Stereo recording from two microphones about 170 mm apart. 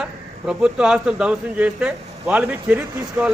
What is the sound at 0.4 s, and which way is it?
Speech, 5° right (ahead or behind).